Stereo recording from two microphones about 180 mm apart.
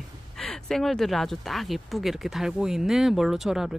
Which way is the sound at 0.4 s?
Centre (ahead or behind).